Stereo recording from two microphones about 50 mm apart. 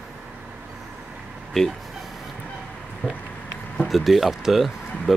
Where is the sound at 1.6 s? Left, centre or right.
Centre.